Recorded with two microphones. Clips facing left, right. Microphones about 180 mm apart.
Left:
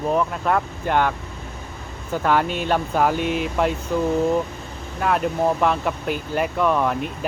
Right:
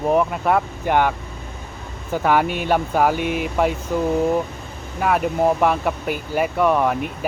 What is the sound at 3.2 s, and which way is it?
Speech, 55° right (ahead or behind).